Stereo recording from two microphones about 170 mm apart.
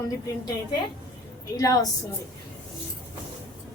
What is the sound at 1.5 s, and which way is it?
Speech, 20° left (ahead or behind).